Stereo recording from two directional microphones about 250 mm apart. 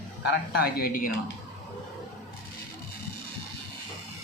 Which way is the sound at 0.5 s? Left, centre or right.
Left.